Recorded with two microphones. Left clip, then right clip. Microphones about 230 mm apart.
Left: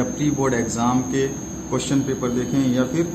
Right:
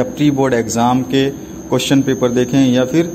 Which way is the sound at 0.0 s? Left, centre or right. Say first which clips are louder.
Right 7 dB; right.